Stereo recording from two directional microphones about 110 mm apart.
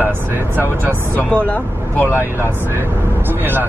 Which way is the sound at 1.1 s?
15° left (ahead or behind).